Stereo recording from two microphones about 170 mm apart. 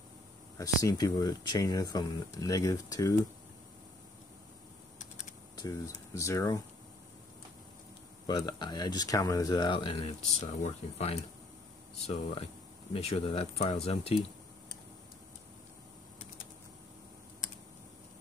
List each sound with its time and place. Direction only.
0.6 s speech: 20° left (ahead or behind)
5.6 s speech: 20° left (ahead or behind)
8.3 s speech: 25° left (ahead or behind); by 11.1 s 40° left (ahead or behind)
12.9 s speech: 30° left (ahead or behind)